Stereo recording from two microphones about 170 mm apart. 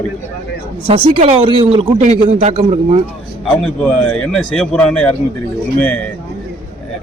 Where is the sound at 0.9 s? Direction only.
35° right (ahead or behind).